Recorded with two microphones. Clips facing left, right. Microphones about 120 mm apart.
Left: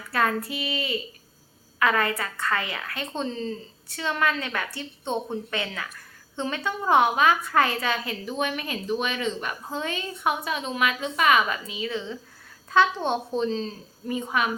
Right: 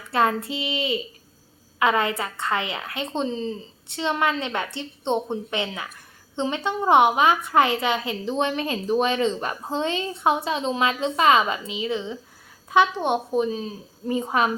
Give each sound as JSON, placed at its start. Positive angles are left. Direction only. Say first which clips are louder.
{"t": 0.1, "sound": "a woman's voice", "louder": "right 3 dB", "side_deg": -20}
{"t": 14.1, "sound": "a woman's voice", "louder": "right 4 dB", "side_deg": -30}